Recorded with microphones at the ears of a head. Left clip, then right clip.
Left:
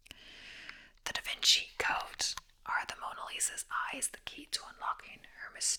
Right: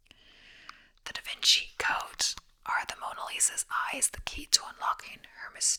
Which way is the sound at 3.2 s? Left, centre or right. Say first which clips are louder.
Right 6 dB; right.